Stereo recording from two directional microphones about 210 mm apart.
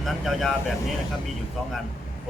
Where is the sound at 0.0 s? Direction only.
Centre (ahead or behind).